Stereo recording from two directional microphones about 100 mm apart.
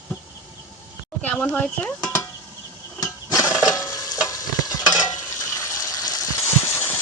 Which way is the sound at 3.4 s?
10° right (ahead or behind).